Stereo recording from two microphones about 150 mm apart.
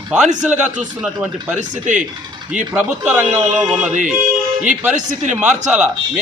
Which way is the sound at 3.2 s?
50° right (ahead or behind).